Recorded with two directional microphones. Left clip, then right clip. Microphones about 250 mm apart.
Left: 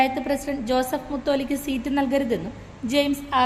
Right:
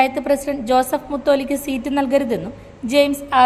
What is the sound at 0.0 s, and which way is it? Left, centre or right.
A woman's voice, centre.